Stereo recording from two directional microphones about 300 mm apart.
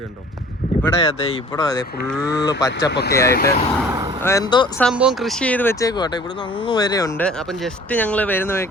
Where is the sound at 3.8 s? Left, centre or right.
Centre.